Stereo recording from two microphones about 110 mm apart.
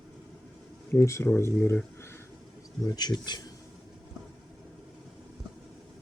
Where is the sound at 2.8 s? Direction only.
40° left (ahead or behind).